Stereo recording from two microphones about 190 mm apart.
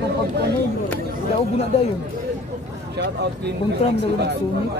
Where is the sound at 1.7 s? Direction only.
35° left (ahead or behind).